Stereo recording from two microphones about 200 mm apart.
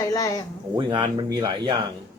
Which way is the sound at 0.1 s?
15° left (ahead or behind).